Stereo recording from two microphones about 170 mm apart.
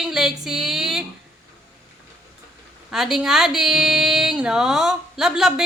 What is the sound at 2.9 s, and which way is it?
Speech, centre (ahead or behind).